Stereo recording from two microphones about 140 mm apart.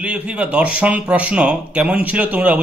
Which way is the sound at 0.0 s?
10° right (ahead or behind).